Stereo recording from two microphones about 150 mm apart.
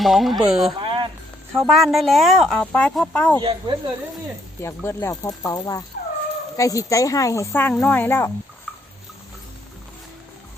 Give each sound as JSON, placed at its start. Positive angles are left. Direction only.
{"t": 0.0, "sound": "speech", "side_deg": 0}
{"t": 0.8, "sound": "a sound", "side_deg": -35}
{"t": 1.6, "sound": "speech", "side_deg": 0}
{"t": 3.4, "sound": "speech", "side_deg": -35}
{"t": 4.6, "sound": "speech", "side_deg": 15}